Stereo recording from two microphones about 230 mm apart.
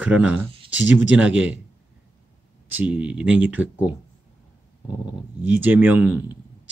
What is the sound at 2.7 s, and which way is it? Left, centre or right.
Speech, centre.